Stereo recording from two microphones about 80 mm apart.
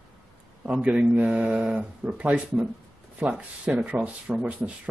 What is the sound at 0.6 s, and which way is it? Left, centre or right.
Speech, centre.